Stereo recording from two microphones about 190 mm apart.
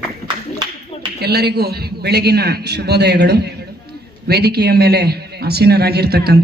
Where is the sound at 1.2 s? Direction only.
60° right (ahead or behind).